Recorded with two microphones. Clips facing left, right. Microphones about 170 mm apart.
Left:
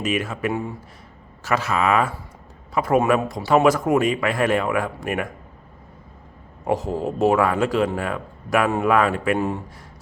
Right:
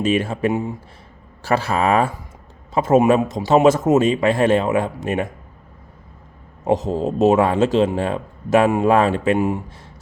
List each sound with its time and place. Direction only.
0.0 s a man's voice: 30° right (ahead or behind)
1.5 s a man's voice: 30° right (ahead or behind)
6.7 s a man's voice: 20° right (ahead or behind)